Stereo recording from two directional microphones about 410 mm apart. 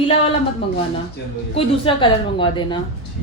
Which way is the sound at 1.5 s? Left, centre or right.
Centre.